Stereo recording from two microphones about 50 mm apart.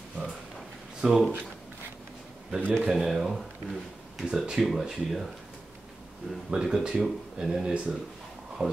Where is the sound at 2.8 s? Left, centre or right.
Centre.